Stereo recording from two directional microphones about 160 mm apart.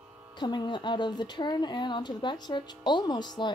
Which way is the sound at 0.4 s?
25° left (ahead or behind).